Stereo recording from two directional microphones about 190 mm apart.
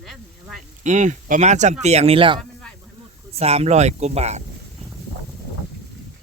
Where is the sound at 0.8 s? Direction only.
40° right (ahead or behind).